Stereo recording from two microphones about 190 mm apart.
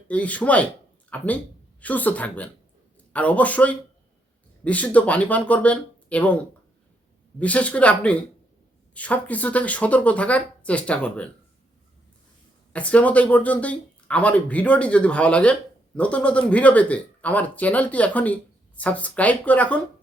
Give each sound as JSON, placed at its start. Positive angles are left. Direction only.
{"t": 0.1, "sound": "speech", "side_deg": 5}
{"t": 12.7, "sound": "speech", "side_deg": 5}